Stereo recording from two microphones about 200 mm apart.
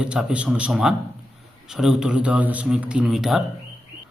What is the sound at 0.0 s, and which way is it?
A man's voice, 5° right (ahead or behind).